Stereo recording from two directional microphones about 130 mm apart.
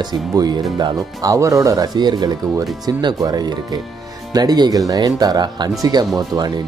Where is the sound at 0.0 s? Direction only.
30° right (ahead or behind).